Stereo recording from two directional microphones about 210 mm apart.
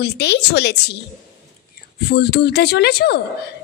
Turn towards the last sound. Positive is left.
turn(degrees=50)  # may be behind; listen again after turning